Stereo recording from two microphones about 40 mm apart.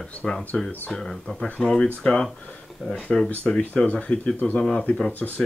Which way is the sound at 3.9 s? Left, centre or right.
Left.